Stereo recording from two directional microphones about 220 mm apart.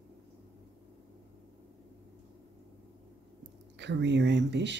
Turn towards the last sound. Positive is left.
turn(degrees=-50)  # may be behind; listen again after turning